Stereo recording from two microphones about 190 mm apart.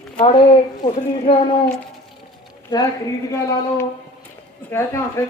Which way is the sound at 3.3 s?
15° left (ahead or behind).